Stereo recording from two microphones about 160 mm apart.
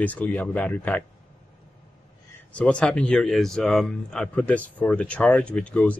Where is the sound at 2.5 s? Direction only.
5° left (ahead or behind).